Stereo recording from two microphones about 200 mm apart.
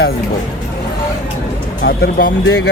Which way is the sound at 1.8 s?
50° left (ahead or behind).